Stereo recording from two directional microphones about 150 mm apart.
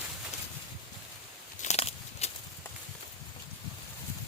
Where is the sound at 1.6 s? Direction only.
45° left (ahead or behind).